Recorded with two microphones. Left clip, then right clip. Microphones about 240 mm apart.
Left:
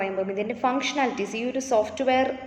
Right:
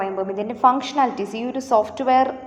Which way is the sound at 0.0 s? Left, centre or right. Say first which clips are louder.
Right 3 dB; centre.